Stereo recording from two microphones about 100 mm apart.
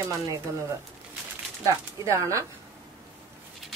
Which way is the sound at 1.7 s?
30° right (ahead or behind).